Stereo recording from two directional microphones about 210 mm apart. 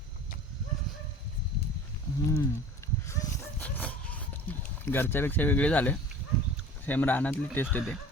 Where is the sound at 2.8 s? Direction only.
15° left (ahead or behind).